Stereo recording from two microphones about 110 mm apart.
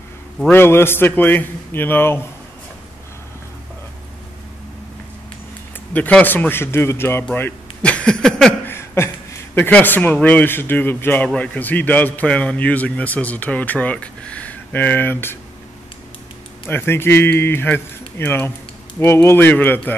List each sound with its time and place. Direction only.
0.5 s speech: 20° left (ahead or behind)
5.9 s speech: 15° left (ahead or behind)
8.6 s a man's voice: 20° left (ahead or behind)
16.6 s a man's voice: 20° left (ahead or behind)